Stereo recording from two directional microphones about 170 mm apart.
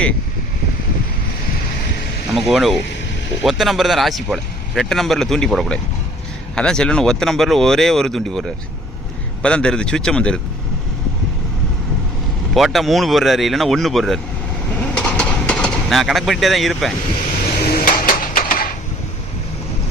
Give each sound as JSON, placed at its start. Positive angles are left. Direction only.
{"t": 2.3, "sound": "speech", "side_deg": 0}
{"t": 12.5, "sound": "speech", "side_deg": 0}
{"t": 14.9, "sound": "vehicle", "side_deg": 5}
{"t": 17.7, "sound": "a sound", "side_deg": 55}